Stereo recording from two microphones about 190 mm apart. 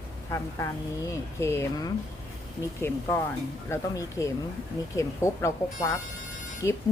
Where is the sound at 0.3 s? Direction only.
15° left (ahead or behind).